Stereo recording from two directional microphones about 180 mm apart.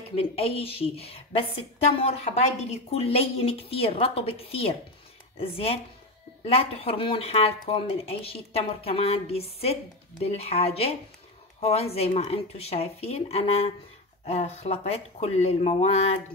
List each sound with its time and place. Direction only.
0.1 s a woman's voice: 30° left (ahead or behind)